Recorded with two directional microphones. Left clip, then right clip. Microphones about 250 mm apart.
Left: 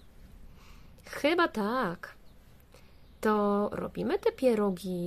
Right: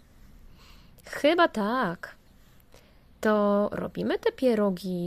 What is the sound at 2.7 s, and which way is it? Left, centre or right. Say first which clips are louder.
Speech: right 2 dB; centre.